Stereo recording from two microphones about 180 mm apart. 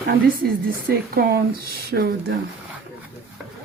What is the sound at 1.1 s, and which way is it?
Speech, 55° right (ahead or behind).